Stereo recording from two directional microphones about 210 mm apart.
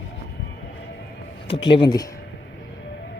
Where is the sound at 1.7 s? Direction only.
20° left (ahead or behind).